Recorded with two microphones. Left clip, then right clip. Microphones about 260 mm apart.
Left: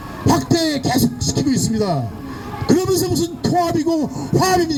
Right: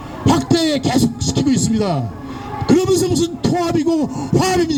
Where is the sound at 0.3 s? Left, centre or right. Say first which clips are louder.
Right 1 dB; right.